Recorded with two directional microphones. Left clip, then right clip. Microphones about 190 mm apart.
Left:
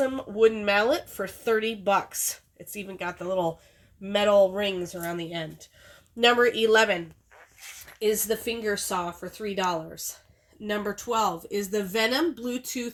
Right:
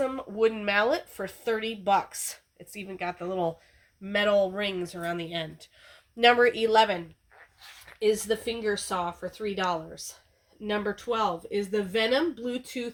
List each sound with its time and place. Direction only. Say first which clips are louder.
0.0 s speech: left 4 dB; 45° left (ahead or behind)
8.0 s speech: even; 50° left (ahead or behind)
11.0 s speech: left 2 dB; 55° left (ahead or behind)